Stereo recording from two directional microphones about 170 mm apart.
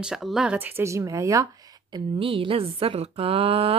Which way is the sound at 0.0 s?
5° right (ahead or behind).